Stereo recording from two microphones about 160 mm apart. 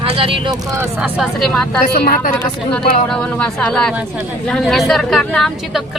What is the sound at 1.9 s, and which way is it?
Speech, 65° left (ahead or behind).